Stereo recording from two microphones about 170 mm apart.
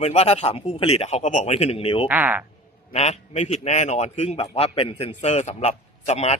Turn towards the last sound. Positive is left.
turn(degrees=40)  # may be behind; listen again after turning